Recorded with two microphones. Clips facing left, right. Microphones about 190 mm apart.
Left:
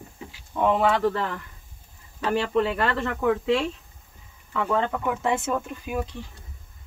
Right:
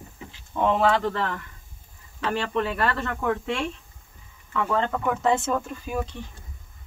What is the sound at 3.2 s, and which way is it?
Speech, 5° left (ahead or behind).